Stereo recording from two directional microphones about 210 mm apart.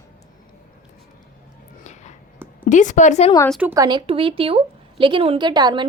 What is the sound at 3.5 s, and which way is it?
Speech, 10° right (ahead or behind).